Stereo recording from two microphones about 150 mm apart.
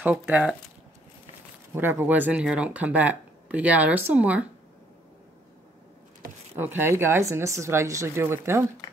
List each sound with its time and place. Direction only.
0.0 s speech: 10° right (ahead or behind)
1.7 s speech: 15° right (ahead or behind)
6.5 s speech: 15° right (ahead or behind)